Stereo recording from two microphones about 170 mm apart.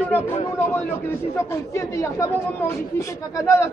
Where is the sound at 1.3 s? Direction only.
15° left (ahead or behind).